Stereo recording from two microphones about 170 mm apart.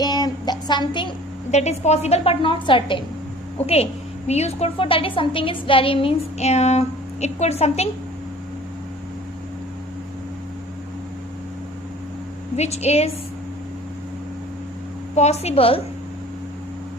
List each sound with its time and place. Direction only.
0.0 s child singing: 25° left (ahead or behind)
1.5 s a woman's voice: 40° left (ahead or behind)
4.3 s a woman's voice: 40° left (ahead or behind)
12.5 s a woman's voice: 40° left (ahead or behind)
15.1 s a woman's voice: 40° left (ahead or behind)